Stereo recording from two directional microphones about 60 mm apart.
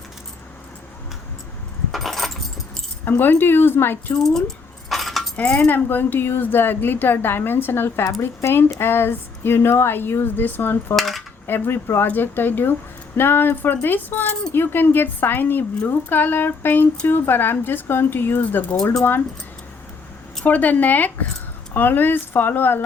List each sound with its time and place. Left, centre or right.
1.9 s keys jangling: centre
3.0 s speech: left
4.2 s a sound: centre
5.5 s speech: left
10.9 s cutlery: centre
11.4 s speech: left
20.4 s speech: left